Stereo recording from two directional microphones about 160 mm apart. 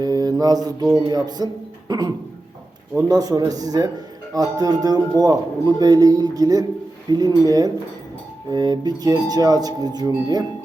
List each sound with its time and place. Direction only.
0.0 s speech: 25° right (ahead or behind)